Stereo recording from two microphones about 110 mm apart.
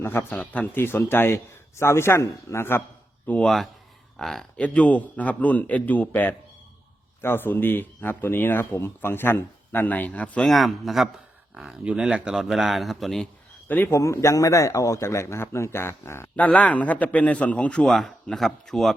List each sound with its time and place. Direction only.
0.0 s a man's voice: 20° left (ahead or behind)
3.2 s speech: 10° left (ahead or behind)
13.7 s a man's voice: 20° left (ahead or behind)
16.3 s speech: 10° left (ahead or behind)